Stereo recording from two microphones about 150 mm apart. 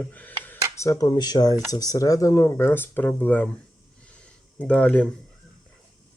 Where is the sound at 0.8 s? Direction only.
20° left (ahead or behind).